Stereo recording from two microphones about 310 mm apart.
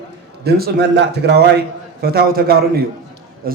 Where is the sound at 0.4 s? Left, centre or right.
Right.